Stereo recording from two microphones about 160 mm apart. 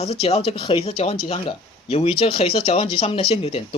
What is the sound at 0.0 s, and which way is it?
Speech, 40° left (ahead or behind).